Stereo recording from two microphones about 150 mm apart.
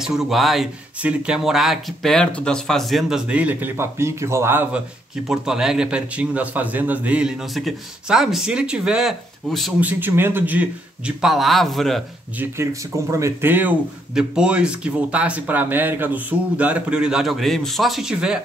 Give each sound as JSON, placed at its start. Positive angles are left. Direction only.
{"t": 0.0, "sound": "speech", "side_deg": -5}
{"t": 5.3, "sound": "speech", "side_deg": -5}
{"t": 9.8, "sound": "speech", "side_deg": -10}
{"t": 13.1, "sound": "speech", "side_deg": -15}